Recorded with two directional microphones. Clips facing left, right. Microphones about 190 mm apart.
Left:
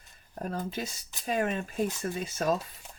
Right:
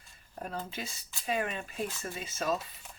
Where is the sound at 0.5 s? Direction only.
45° left (ahead or behind).